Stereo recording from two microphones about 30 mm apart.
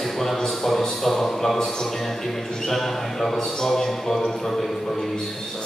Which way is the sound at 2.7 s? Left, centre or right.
Centre.